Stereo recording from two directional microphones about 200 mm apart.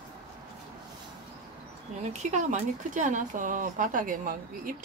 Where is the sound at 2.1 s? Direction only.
35° right (ahead or behind).